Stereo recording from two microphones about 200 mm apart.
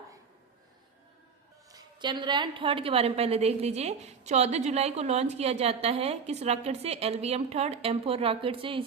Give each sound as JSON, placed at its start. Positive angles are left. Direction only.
{"t": 1.7, "sound": "a woman's voice", "side_deg": -20}